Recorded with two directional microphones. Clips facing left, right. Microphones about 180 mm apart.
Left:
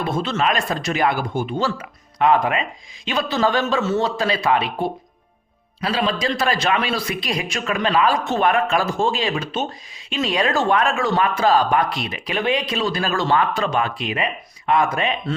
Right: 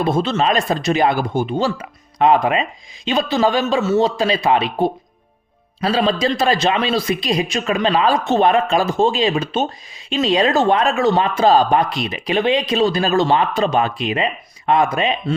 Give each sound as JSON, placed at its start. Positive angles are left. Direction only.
{"t": 0.0, "sound": "speech", "side_deg": -30}